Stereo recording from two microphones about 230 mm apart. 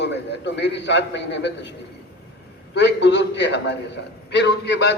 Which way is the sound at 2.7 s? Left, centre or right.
Left.